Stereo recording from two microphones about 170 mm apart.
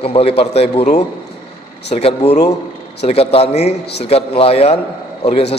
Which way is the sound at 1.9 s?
35° left (ahead or behind).